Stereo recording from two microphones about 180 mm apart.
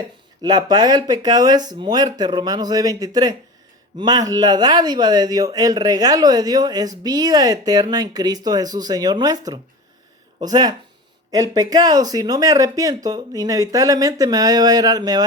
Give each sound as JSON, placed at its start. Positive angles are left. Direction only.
{"t": 0.4, "sound": "speech", "side_deg": -25}